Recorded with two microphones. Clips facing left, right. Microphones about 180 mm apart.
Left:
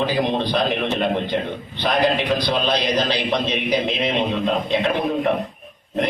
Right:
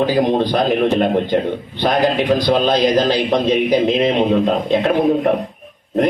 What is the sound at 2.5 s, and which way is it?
A man's voice, 45° right (ahead or behind).